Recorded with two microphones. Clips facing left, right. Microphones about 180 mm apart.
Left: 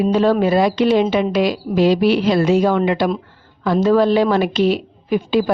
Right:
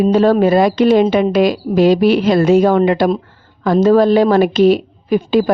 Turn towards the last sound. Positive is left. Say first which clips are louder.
# right 3 dB
turn(degrees=-45)  # may be behind; listen again after turning